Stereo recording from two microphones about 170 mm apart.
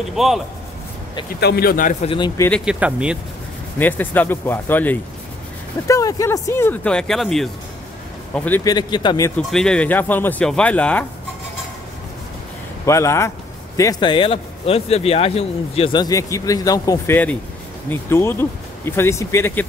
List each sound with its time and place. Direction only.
0.1 s speech: centre (ahead or behind)
1.4 s speech: 65° left (ahead or behind); by 2.0 s 50° left (ahead or behind)
2.0 s speech: 25° left (ahead or behind)
2.6 s speech: 5° right (ahead or behind)
3.7 s speech: 10° left (ahead or behind)
8.6 s speech: 25° left (ahead or behind)
9.5 s speech: 5° left (ahead or behind)
12.8 s speech: 15° left (ahead or behind)